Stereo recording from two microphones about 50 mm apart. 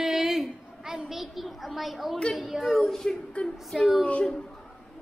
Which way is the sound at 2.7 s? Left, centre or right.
Centre.